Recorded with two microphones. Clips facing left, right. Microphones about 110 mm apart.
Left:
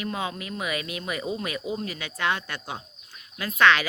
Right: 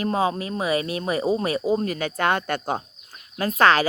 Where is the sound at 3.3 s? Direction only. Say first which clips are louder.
Right 3 dB; 40° right (ahead or behind).